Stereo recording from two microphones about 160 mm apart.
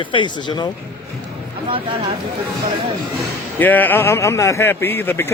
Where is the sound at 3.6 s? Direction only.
10° left (ahead or behind).